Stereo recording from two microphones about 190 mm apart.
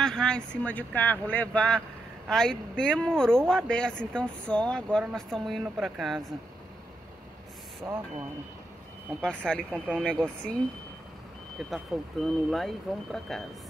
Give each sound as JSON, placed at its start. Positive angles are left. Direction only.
{"t": 0.0, "sound": "speech", "side_deg": 5}
{"t": 7.8, "sound": "speech", "side_deg": -15}
{"t": 9.2, "sound": "speech", "side_deg": 5}
{"t": 11.7, "sound": "speech", "side_deg": 0}